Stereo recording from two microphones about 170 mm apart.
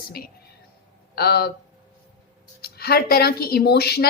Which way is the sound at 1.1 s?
70° left (ahead or behind).